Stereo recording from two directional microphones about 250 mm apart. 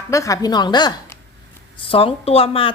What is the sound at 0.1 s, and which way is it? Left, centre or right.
A woman's voice, centre.